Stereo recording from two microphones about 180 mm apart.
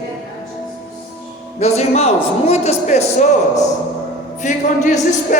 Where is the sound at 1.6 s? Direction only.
40° left (ahead or behind).